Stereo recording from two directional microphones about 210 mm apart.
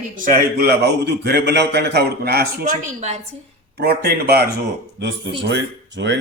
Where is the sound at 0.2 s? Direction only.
40° right (ahead or behind).